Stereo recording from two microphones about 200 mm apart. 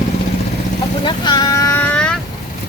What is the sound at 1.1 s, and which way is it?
Vehicle, 20° left (ahead or behind).